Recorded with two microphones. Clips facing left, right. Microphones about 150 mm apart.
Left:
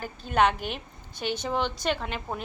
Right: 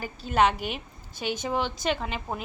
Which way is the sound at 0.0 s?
5° right (ahead or behind).